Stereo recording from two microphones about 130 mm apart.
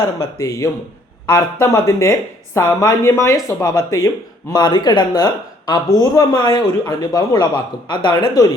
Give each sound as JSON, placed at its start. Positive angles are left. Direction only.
{"t": 0.2, "sound": "speech", "side_deg": 25}